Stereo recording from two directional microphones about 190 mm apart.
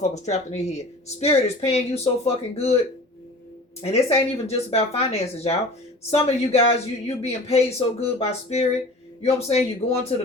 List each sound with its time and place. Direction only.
0.0 s speech: 35° left (ahead or behind)
3.8 s speech: 30° left (ahead or behind)